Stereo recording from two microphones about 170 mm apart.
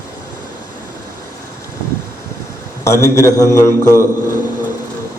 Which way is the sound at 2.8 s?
15° left (ahead or behind).